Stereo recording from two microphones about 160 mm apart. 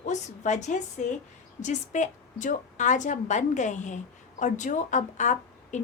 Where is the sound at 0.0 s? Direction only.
45° left (ahead or behind).